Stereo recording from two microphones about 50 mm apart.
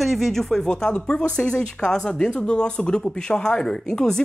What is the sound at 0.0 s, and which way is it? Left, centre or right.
Speech, centre.